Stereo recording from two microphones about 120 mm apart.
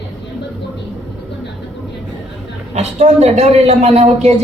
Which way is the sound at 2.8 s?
70° right (ahead or behind).